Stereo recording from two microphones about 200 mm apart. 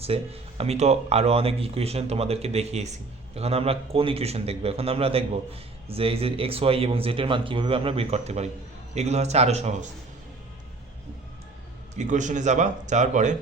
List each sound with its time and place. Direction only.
0.0 s a man's voice: 30° right (ahead or behind)
11.9 s speech: 40° right (ahead or behind)